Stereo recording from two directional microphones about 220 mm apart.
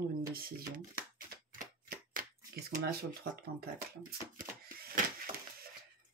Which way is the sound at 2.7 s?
45° right (ahead or behind).